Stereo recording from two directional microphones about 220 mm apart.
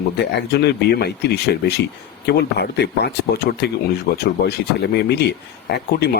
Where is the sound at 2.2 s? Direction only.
50° left (ahead or behind).